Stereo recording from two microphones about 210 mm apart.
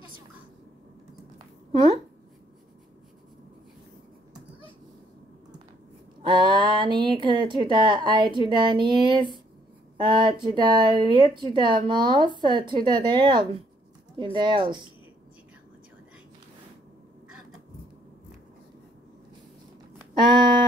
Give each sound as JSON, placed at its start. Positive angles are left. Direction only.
{"t": 1.7, "sound": "speech", "side_deg": -30}
{"t": 6.2, "sound": "speech", "side_deg": -20}